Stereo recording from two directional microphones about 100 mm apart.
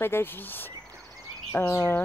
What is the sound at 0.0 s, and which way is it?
Speech, 20° left (ahead or behind).